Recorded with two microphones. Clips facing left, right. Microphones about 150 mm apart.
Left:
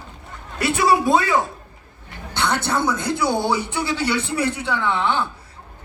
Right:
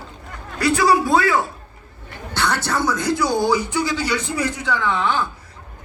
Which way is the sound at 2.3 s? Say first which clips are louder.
Even; 20° left (ahead or behind).